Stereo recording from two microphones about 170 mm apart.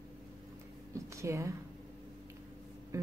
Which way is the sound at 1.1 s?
15° right (ahead or behind).